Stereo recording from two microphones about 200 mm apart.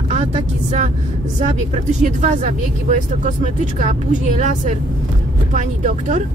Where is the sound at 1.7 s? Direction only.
35° right (ahead or behind).